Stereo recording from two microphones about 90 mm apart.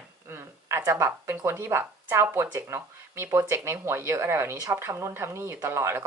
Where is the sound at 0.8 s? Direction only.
30° right (ahead or behind).